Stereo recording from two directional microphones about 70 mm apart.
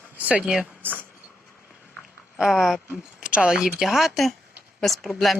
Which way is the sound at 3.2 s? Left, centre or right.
Centre.